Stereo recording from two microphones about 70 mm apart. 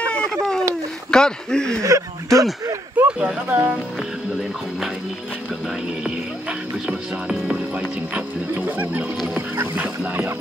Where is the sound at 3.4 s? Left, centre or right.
Right.